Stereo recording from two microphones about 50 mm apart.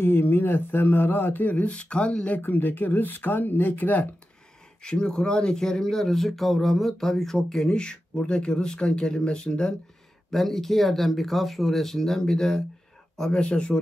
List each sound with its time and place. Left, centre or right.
0.0 s speech: left
2.4 s speech: left
4.8 s speech: centre
10.3 s speech: centre